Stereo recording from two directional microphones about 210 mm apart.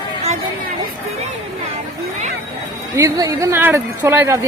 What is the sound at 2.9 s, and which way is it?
Speech, 15° right (ahead or behind).